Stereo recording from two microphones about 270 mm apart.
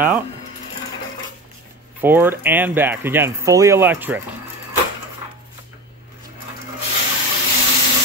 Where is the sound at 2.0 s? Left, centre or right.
Centre.